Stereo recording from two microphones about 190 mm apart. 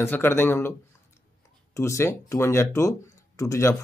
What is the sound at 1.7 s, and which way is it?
Speech, 15° left (ahead or behind).